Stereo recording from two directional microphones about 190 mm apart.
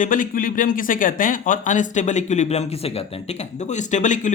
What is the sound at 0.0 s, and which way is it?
Speech, 45° left (ahead or behind).